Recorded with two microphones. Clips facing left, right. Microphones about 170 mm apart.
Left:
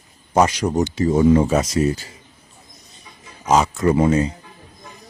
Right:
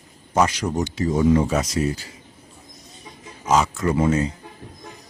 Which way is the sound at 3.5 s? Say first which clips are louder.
Left 3 dB; 20° left (ahead or behind).